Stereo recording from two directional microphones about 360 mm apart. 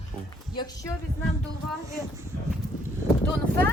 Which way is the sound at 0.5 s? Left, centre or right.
Centre.